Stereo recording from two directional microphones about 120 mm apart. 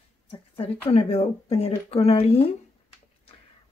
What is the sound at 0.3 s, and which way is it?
A woman's voice, 50° left (ahead or behind).